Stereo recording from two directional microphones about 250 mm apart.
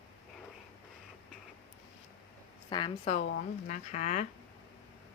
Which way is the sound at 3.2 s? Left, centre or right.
Left.